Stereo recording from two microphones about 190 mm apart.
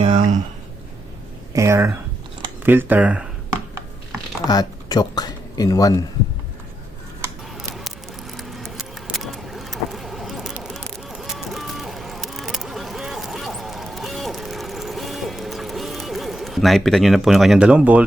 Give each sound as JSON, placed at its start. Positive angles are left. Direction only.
{"t": 0.0, "sound": "a sound", "side_deg": -35}
{"t": 1.5, "sound": "speech", "side_deg": -15}
{"t": 4.4, "sound": "speech", "side_deg": 20}
{"t": 7.5, "sound": "scissors", "side_deg": 0}
{"t": 8.4, "sound": "vehicle", "side_deg": 0}
{"t": 11.1, "sound": "a sound", "side_deg": 0}